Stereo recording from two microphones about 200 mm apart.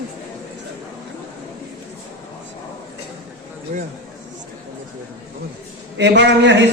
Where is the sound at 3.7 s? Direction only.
35° right (ahead or behind).